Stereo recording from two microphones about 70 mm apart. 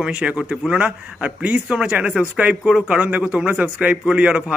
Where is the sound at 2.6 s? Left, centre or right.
Centre.